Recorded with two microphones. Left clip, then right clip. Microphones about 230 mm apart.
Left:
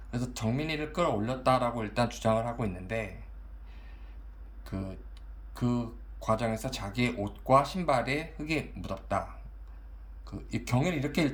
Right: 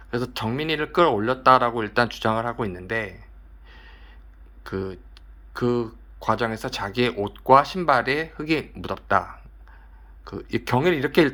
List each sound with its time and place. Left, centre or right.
0.1 s speech: centre
4.6 s speech: centre